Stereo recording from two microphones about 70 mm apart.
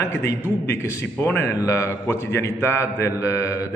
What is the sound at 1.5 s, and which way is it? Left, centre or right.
Speech, left.